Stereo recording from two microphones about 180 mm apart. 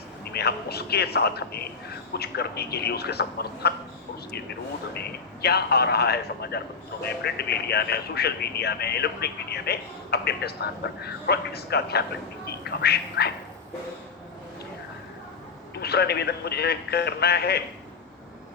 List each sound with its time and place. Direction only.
0.3 s speech: 65° left (ahead or behind)
4.9 s speech: 65° left (ahead or behind)
15.7 s speech: 65° left (ahead or behind)